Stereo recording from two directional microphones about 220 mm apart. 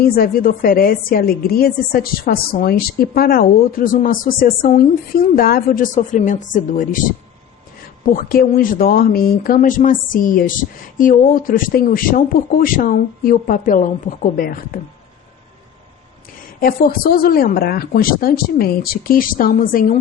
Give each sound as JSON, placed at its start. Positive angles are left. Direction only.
{"t": 0.0, "sound": "a woman's voice", "side_deg": 40}
{"t": 8.1, "sound": "a woman's voice", "side_deg": 40}
{"t": 16.6, "sound": "a woman's voice", "side_deg": 40}